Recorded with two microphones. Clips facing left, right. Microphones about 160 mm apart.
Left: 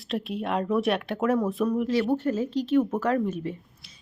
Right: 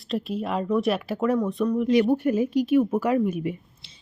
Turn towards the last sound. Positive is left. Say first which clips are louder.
# right 3 dB
turn(degrees=-10)  # may be behind; listen again after turning